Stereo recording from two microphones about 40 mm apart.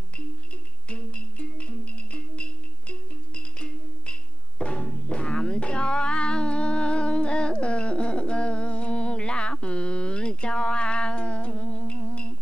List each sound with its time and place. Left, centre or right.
0.8 s music: left